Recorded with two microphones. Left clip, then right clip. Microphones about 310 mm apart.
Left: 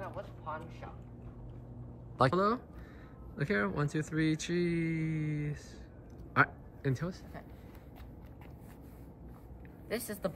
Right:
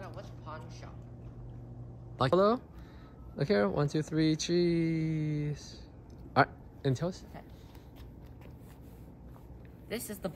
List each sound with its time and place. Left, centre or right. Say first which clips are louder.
2.1 s speech: right 2 dB; centre
9.8 s speech: left 2 dB; centre